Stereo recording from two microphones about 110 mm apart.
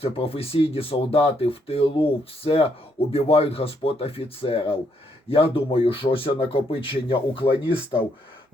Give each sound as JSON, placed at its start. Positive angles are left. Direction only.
{"t": 0.0, "sound": "speech", "side_deg": 60}